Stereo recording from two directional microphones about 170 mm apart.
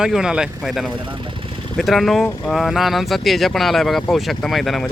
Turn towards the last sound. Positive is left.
turn(degrees=0)  # may be behind; listen again after turning